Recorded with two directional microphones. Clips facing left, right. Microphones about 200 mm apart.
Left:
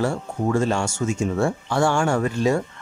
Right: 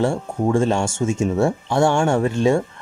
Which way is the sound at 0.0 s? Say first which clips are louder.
Right 3 dB; 25° right (ahead or behind).